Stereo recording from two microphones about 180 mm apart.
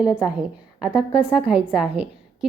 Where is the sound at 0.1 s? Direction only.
5° right (ahead or behind).